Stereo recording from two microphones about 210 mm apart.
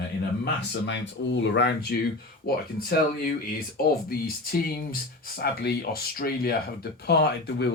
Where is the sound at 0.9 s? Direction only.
55° left (ahead or behind).